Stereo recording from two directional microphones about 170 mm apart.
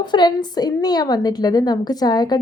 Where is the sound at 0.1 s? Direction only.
25° left (ahead or behind).